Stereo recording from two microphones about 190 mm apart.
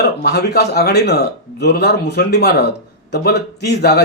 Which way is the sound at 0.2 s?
60° left (ahead or behind).